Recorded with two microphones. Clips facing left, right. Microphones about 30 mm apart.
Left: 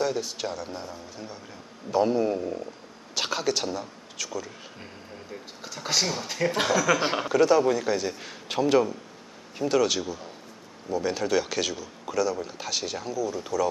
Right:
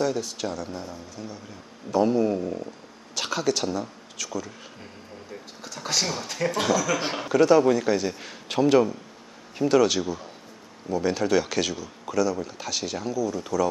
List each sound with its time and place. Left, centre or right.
0.0 s a man's voice: centre